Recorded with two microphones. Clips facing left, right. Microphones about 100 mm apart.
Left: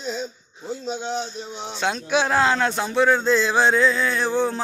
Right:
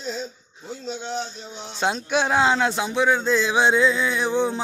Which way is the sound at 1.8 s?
25° right (ahead or behind).